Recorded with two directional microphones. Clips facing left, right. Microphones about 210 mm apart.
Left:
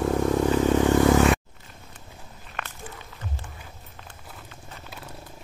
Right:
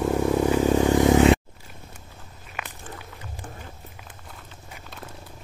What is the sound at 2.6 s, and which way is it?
Walk, 5° right (ahead or behind).